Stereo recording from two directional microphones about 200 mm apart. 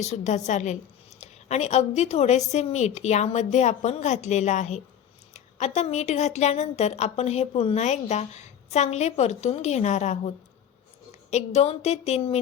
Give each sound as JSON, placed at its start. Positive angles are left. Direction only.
{"t": 0.0, "sound": "a woman's voice", "side_deg": 35}